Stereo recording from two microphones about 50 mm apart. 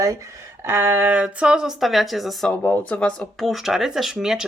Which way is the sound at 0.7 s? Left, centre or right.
Right.